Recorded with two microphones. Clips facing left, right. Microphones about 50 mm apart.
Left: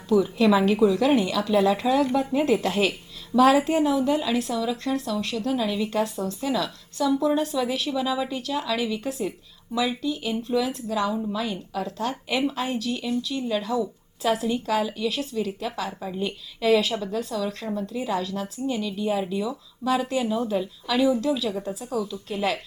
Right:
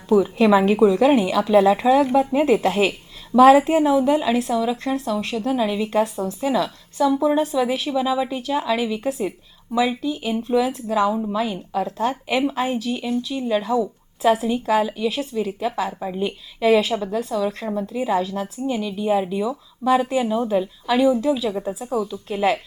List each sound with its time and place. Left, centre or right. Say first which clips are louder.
0.1 s a woman's voice: right 4 dB; right
22.3 s a woman's voice: right 7 dB; right